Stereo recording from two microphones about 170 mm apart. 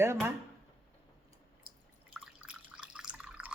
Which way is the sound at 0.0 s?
15° right (ahead or behind).